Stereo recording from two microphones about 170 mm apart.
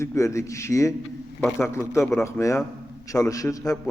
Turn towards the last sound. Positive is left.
turn(degrees=20)  # may be behind; listen again after turning